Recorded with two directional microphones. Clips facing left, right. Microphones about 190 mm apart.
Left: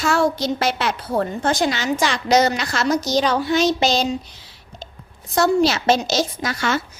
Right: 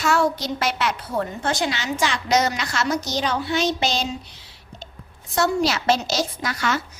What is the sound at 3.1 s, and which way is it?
Speech, 90° left.